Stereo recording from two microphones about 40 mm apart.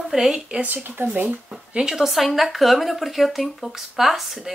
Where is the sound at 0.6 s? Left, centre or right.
Right.